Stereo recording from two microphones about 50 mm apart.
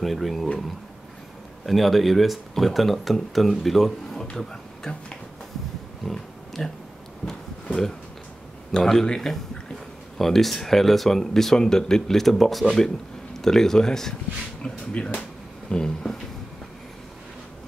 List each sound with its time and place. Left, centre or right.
0.0 s speech: centre
1.7 s speech: centre
4.4 s a sound: centre
6.0 s speech: centre
8.7 s speech: centre